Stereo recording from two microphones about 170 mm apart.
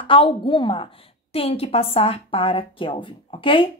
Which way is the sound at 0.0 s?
30° left (ahead or behind).